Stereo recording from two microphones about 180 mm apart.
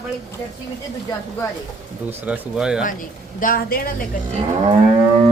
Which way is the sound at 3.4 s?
50° left (ahead or behind).